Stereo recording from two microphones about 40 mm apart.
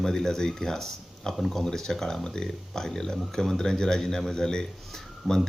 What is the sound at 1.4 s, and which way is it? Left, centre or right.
Speech, centre.